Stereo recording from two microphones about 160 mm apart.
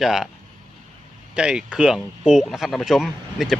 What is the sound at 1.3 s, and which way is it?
Speech, 5° right (ahead or behind).